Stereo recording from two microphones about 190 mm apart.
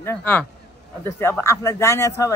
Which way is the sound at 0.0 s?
10° left (ahead or behind).